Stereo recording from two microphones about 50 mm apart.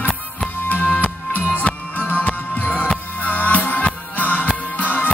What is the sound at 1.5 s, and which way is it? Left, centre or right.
Music, left.